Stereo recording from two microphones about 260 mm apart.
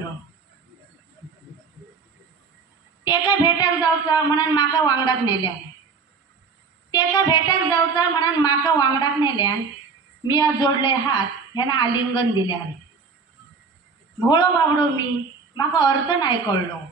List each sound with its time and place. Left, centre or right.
3.0 s a woman's voice: centre
6.9 s a woman's voice: centre
14.2 s a woman's voice: centre